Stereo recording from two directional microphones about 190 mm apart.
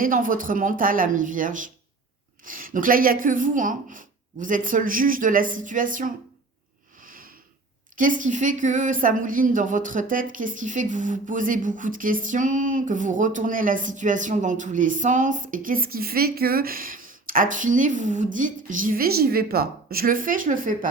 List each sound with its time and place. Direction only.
0.0 s a woman's voice: 45° right (ahead or behind)
7.0 s sniff: 50° right (ahead or behind)
7.9 s a woman's voice: 45° right (ahead or behind)